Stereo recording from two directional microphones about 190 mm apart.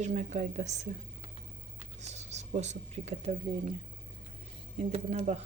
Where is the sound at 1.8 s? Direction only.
35° right (ahead or behind).